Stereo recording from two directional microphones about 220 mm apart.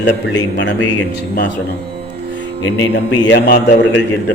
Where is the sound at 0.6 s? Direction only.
60° left (ahead or behind).